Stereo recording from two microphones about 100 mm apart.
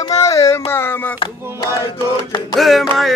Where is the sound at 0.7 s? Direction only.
20° left (ahead or behind).